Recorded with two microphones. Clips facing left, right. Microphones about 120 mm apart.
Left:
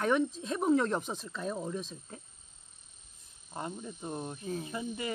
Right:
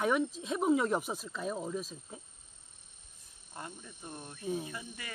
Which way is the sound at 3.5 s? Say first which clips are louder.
Left 7 dB; 25° left (ahead or behind).